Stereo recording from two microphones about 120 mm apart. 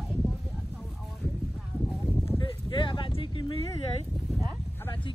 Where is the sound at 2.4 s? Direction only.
45° left (ahead or behind).